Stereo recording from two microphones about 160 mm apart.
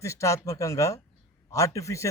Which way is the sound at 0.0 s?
20° left (ahead or behind).